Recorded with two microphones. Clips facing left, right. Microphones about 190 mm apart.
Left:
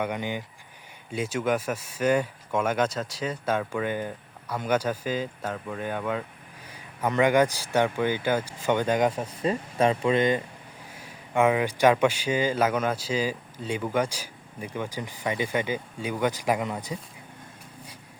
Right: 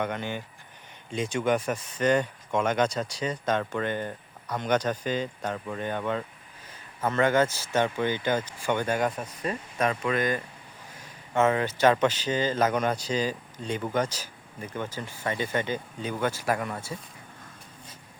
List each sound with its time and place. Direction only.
0.0 s speech: 15° left (ahead or behind)
9.1 s speech: 25° left (ahead or behind)
11.3 s speech: 10° left (ahead or behind)